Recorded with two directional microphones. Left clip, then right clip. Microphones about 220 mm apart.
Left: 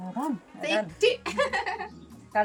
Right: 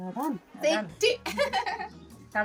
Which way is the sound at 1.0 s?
15° right (ahead or behind).